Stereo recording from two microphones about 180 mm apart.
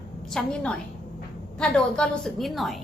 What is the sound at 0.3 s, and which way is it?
A woman's voice, centre (ahead or behind).